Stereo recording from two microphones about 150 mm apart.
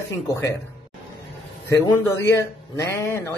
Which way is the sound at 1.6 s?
20° left (ahead or behind).